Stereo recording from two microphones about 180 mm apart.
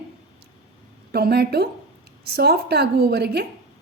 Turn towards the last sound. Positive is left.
turn(degrees=-65)  # may be behind; listen again after turning